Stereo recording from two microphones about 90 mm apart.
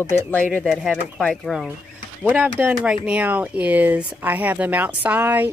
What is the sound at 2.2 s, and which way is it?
Speech, 15° right (ahead or behind).